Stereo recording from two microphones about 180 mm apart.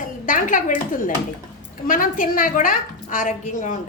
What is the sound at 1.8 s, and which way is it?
A woman's voice, 50° left (ahead or behind).